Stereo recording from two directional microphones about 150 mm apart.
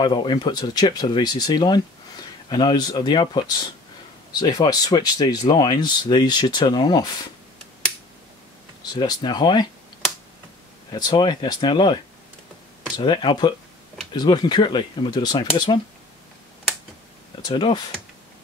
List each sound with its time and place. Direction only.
0.0 s speech: 30° left (ahead or behind)
8.8 s speech: 25° left (ahead or behind)
10.9 s speech: 30° left (ahead or behind)
17.4 s speech: 30° left (ahead or behind)